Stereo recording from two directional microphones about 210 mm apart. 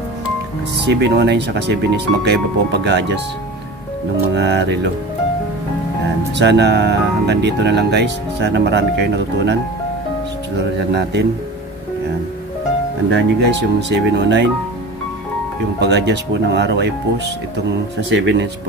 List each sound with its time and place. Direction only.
0.8 s speech: 55° right (ahead or behind)
4.3 s speech: 55° right (ahead or behind)
6.3 s speech: 55° right (ahead or behind)
10.9 s speech: 55° right (ahead or behind)
13.1 s speech: 55° right (ahead or behind)
15.8 s speech: 55° right (ahead or behind)
18.1 s speech: 55° right (ahead or behind)